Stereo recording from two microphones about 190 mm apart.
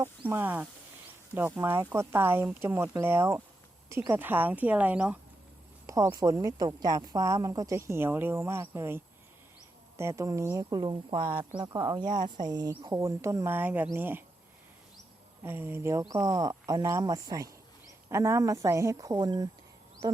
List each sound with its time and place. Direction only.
0.0 s speech: 10° right (ahead or behind)
10.0 s speech: 15° right (ahead or behind)
15.4 s speech: 10° right (ahead or behind)